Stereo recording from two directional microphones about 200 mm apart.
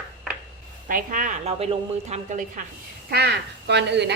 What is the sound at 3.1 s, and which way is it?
Speech, 55° right (ahead or behind).